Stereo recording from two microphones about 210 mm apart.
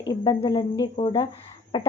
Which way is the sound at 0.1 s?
20° left (ahead or behind).